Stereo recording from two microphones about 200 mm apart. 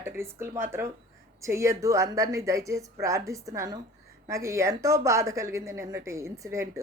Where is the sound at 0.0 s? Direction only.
10° right (ahead or behind).